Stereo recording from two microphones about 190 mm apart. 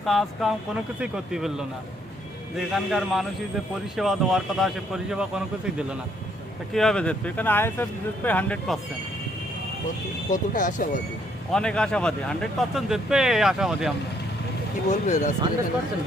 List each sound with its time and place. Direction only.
0.0 s speech: centre (ahead or behind)
2.7 s speech: centre (ahead or behind)
6.7 s speech: 5° left (ahead or behind)
10.3 s speech: 45° left (ahead or behind)
11.5 s speech: 5° left (ahead or behind)
14.8 s speech: 40° left (ahead or behind)